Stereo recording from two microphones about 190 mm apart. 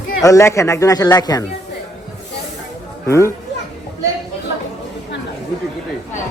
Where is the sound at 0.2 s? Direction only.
15° left (ahead or behind).